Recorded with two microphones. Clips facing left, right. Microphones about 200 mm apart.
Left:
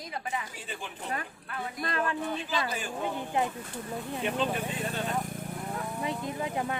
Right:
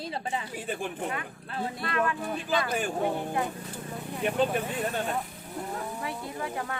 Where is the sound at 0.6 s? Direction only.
55° right (ahead or behind).